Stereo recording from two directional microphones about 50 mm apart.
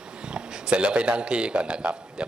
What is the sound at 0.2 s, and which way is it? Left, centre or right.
A man's voice, centre.